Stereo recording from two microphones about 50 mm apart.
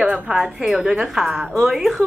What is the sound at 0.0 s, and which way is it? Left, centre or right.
A woman's voice, centre.